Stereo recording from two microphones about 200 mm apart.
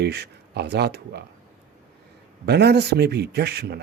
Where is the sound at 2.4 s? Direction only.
55° right (ahead or behind).